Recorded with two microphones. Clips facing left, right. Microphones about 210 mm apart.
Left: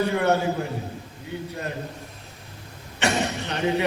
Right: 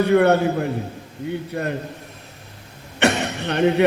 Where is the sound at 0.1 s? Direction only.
60° right (ahead or behind).